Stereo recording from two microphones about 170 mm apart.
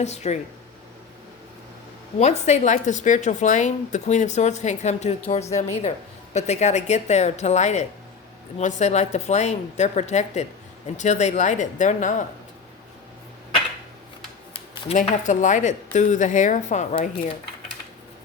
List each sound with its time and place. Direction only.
0.0 s speech: 40° left (ahead or behind)
2.1 s a woman's voice: 40° left (ahead or behind)
14.5 s a woman's voice: 40° left (ahead or behind)